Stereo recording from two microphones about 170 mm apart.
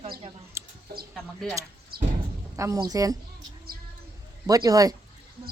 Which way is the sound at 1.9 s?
65° right (ahead or behind).